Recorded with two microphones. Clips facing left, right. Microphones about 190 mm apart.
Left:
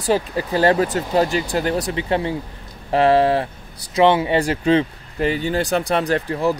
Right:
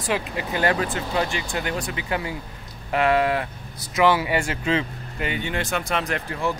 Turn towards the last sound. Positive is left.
turn(degrees=35)  # may be behind; listen again after turning